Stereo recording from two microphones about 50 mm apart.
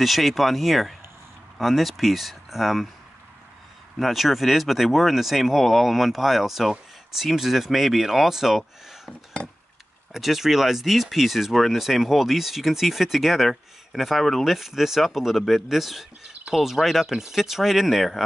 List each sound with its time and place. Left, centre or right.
0.0 s speech: centre
4.0 s speech: centre
10.1 s speech: centre